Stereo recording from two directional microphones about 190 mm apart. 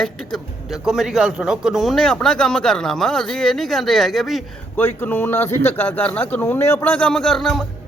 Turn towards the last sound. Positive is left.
turn(degrees=0)  # may be behind; listen again after turning